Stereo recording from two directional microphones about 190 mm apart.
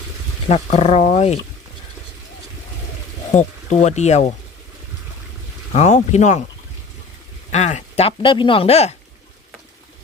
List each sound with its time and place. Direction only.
0.4 s speech: 35° left (ahead or behind)
3.3 s speech: 40° left (ahead or behind)
5.7 s speech: 35° left (ahead or behind)
7.5 s speech: 35° left (ahead or behind)